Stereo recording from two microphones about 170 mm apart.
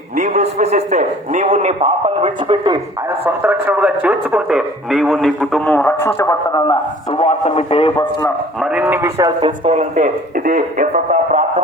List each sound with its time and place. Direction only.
0.2 s a man's voice: 45° right (ahead or behind); by 2.8 s 25° right (ahead or behind)
3.2 s a man's voice: 10° right (ahead or behind); by 8.3 s 25° left (ahead or behind)
8.6 s speech: 5° right (ahead or behind)
9.4 s a man's voice: 30° right (ahead or behind)
9.9 s speech: 50° right (ahead or behind)